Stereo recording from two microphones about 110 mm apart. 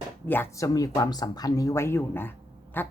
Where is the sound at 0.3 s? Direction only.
25° left (ahead or behind).